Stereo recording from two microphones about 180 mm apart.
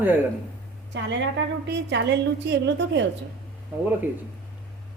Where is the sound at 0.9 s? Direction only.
85° right.